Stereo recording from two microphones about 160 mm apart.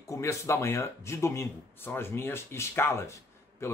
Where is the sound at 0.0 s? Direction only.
20° left (ahead or behind).